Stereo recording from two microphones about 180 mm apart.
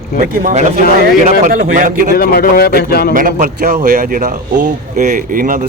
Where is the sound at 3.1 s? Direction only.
50° right (ahead or behind).